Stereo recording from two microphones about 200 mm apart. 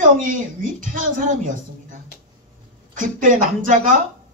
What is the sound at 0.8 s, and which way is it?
Speech, 40° right (ahead or behind).